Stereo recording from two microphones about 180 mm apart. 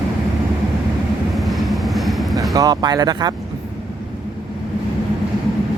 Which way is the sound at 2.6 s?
20° right (ahead or behind).